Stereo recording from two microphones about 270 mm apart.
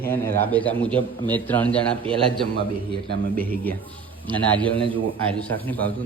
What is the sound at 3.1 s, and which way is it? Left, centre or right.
Speech, right.